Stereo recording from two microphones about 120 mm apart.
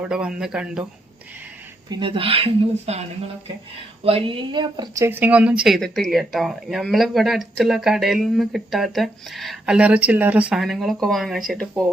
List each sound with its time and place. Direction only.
0.0 s speech: 10° right (ahead or behind)
1.9 s speech: 45° right (ahead or behind)
4.0 s speech: 50° right (ahead or behind)
5.0 s speech: 15° right (ahead or behind); by 9.7 s centre (ahead or behind)
9.7 s speech: 10° right (ahead or behind); by 11.9 s 10° left (ahead or behind)